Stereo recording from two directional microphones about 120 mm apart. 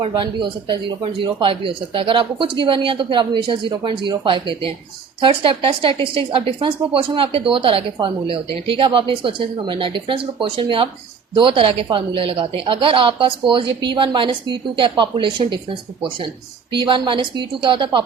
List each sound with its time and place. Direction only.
0.1 s a man's voice: 40° right (ahead or behind)
16.7 s a woman's voice: 40° right (ahead or behind)